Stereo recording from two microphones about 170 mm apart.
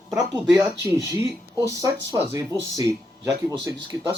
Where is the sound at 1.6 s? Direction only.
20° right (ahead or behind).